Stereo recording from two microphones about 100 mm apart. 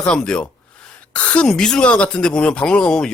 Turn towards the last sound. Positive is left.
turn(degrees=10)  # may be behind; listen again after turning